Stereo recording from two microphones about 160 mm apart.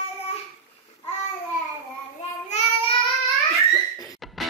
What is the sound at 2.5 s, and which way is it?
Child singing, 35° left (ahead or behind).